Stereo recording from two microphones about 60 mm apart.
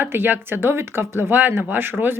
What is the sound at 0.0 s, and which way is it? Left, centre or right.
A woman's voice, right.